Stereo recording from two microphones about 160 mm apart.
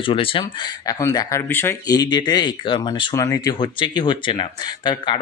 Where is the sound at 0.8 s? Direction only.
20° left (ahead or behind).